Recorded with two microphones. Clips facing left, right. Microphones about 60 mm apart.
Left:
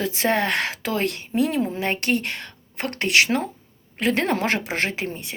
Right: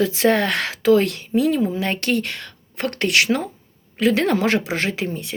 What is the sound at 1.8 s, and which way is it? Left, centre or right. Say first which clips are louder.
Speech: right 1 dB; left.